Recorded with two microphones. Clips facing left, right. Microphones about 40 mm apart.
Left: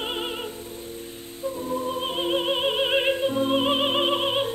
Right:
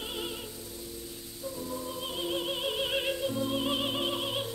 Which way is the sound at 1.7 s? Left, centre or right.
Left.